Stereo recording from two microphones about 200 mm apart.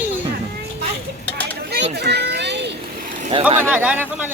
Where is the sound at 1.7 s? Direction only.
60° right (ahead or behind).